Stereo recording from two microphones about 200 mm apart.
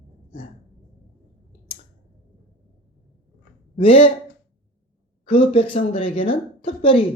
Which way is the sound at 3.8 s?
30° left (ahead or behind).